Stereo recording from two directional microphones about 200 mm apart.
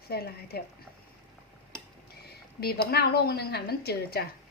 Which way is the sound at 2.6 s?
50° left (ahead or behind).